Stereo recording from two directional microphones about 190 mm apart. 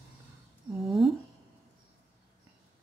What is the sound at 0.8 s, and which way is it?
Speech, centre (ahead or behind).